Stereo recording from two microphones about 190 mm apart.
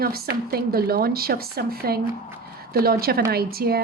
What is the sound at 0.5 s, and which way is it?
A woman's voice, 55° right (ahead or behind).